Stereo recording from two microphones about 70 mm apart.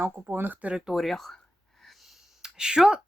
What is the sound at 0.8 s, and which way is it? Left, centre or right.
Speech, centre.